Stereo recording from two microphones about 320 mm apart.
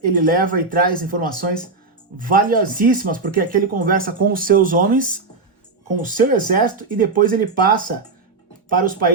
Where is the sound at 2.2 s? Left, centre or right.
Right.